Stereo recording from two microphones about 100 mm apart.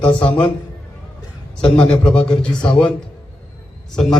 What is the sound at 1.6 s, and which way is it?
A man's voice, 10° left (ahead or behind).